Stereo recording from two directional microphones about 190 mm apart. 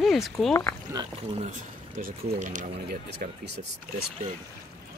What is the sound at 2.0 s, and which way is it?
Speech, 45° right (ahead or behind).